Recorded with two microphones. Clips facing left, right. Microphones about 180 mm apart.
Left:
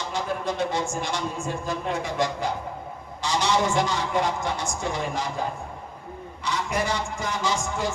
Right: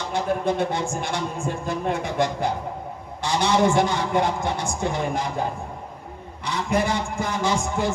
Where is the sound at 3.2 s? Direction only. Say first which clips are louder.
Right 4 dB; 55° right (ahead or behind).